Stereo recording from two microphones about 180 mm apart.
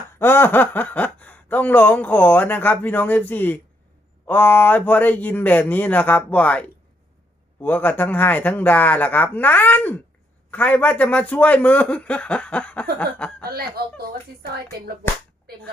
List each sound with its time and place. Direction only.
0.2 s speech: 10° left (ahead or behind)
13.4 s speech: 60° right (ahead or behind)